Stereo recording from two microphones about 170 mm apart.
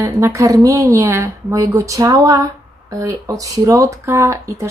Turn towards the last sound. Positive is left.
turn(degrees=-15)  # may be behind; listen again after turning